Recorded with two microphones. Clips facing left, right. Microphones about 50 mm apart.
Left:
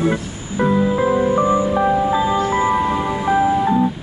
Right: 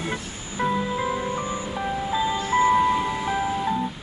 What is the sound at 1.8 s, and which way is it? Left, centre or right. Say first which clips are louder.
Music: left 11 dB; left.